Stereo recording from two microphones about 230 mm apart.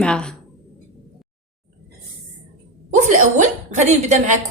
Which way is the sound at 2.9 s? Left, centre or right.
Right.